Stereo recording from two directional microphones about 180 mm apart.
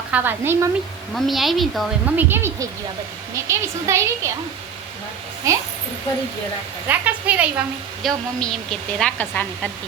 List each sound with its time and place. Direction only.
0.1 s a woman's voice: 10° right (ahead or behind)
1.1 s a woman's voice: centre (ahead or behind)
2.1 s a woman's voice: 10° right (ahead or behind)
5.5 s a woman's voice: 15° right (ahead or behind)
6.8 s a woman's voice: 10° right (ahead or behind)
8.0 s a woman's voice: 5° left (ahead or behind)